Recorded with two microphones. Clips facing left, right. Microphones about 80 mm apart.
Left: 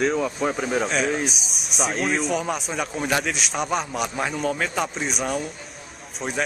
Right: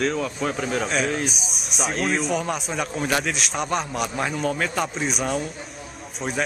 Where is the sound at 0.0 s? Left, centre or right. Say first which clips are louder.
Left 2 dB; centre.